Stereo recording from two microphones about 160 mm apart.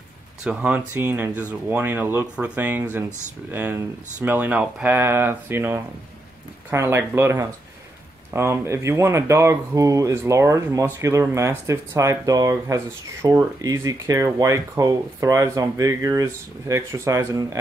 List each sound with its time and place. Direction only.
0.4 s speech: 10° right (ahead or behind)